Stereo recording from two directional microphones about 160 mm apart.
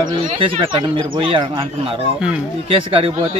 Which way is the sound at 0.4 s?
35° right (ahead or behind).